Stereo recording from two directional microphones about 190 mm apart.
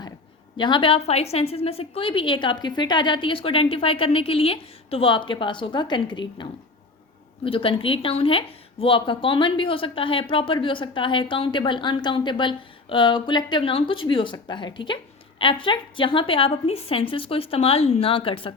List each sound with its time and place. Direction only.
0.5 s speech: 25° left (ahead or behind)